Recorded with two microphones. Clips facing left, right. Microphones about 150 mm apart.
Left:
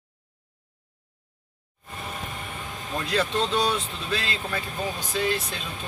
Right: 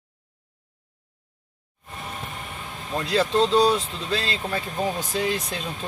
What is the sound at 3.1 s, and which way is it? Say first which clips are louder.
Speech: right 5 dB; 35° right (ahead or behind).